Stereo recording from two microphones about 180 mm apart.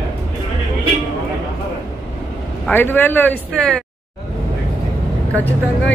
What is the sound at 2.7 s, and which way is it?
Speech, 10° left (ahead or behind).